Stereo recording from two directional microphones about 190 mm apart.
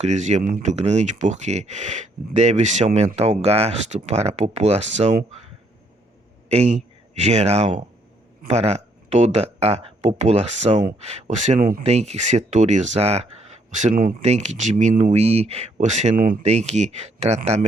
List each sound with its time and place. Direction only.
0.0 s speech: 40° right (ahead or behind)
6.5 s speech: 35° right (ahead or behind)